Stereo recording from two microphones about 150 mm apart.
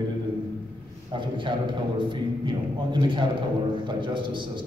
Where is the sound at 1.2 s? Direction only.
35° right (ahead or behind).